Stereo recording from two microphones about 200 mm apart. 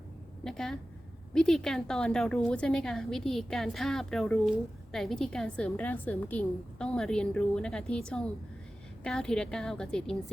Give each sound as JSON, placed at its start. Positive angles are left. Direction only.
{"t": 0.4, "sound": "a woman's voice", "side_deg": 0}